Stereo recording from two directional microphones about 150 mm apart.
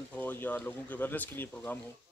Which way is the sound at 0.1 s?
10° left (ahead or behind).